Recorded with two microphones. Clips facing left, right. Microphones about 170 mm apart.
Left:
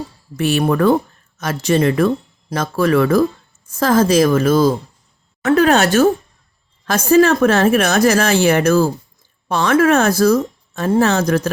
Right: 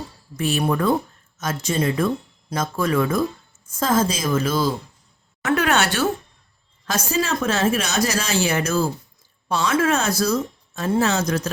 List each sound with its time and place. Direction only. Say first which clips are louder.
0.3 s speech: left 6 dB; 65° left (ahead or behind)
5.4 s speech: left 7 dB; 35° left (ahead or behind)
6.9 s speech: left 11 dB; 55° left (ahead or behind)